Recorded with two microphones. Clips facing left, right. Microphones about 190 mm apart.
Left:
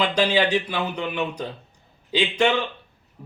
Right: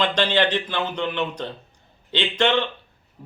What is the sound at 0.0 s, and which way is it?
Speech, 5° left (ahead or behind).